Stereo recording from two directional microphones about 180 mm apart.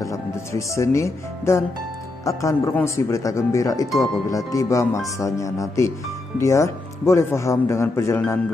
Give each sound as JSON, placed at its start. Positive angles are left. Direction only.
{"t": 0.0, "sound": "speech", "side_deg": 15}